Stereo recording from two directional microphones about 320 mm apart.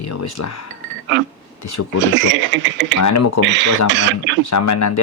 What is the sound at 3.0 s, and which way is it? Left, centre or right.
Speech, left.